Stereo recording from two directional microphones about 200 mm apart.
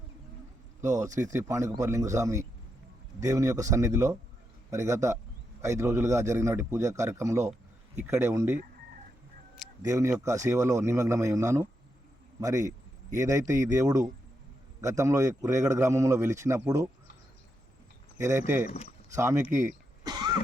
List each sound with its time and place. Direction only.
1.2 s a man's voice: 15° right (ahead or behind)
9.8 s a man's voice: 15° right (ahead or behind)
18.2 s a man's voice: 15° right (ahead or behind)